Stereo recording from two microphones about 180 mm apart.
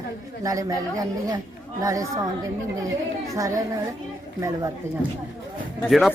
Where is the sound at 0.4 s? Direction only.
20° right (ahead or behind).